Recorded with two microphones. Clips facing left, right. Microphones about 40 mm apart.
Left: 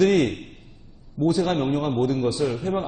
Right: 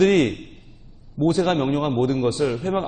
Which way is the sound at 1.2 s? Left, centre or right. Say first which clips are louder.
Right 2 dB; right.